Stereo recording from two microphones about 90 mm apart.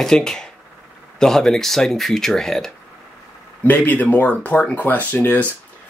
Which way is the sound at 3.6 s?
20° left (ahead or behind).